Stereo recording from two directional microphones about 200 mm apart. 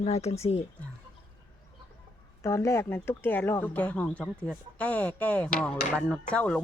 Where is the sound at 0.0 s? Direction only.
35° left (ahead or behind).